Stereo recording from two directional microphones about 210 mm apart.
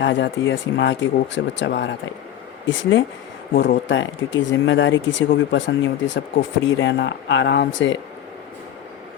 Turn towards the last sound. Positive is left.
turn(degrees=55)  # may be behind; listen again after turning